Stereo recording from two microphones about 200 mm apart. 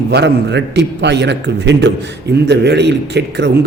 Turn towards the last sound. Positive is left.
turn(degrees=-60)  # may be behind; listen again after turning